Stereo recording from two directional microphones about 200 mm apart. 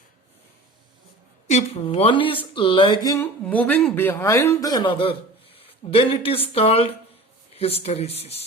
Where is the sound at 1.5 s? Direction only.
30° left (ahead or behind).